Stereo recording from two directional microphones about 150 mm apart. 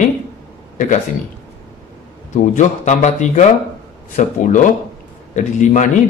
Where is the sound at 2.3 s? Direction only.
55° left (ahead or behind).